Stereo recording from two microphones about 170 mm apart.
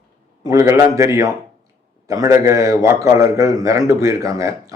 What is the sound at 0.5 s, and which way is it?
A man's voice, 15° right (ahead or behind).